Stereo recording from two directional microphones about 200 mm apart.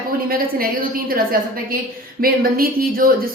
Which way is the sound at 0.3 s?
45° right (ahead or behind).